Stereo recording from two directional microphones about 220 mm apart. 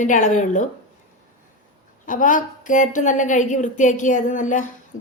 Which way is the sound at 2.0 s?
35° left (ahead or behind).